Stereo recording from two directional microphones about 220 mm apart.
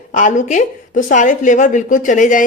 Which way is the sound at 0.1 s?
35° left (ahead or behind).